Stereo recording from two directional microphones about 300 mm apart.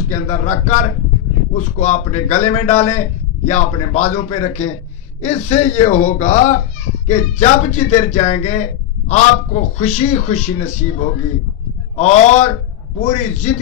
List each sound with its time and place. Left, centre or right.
0.1 s a man's voice: left